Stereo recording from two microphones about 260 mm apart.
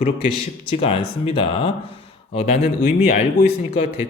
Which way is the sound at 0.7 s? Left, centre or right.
Left.